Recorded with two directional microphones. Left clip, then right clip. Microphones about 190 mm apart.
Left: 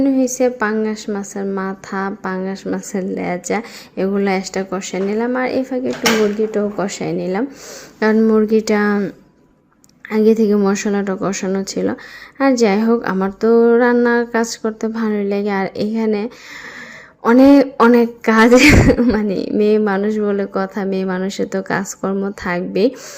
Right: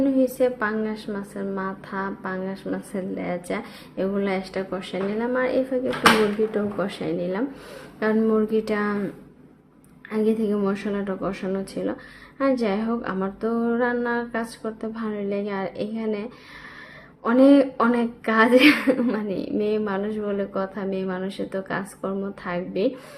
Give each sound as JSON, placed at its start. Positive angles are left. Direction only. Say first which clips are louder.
{"t": 0.0, "sound": "a woman's voice", "louder": "left 5 dB", "side_deg": 35}
{"t": 10.1, "sound": "a woman's voice", "louder": "left 10 dB", "side_deg": 45}